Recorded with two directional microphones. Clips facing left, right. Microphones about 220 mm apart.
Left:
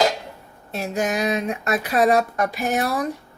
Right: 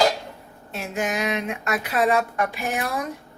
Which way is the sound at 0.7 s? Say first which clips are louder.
Left 3 dB; 40° left (ahead or behind).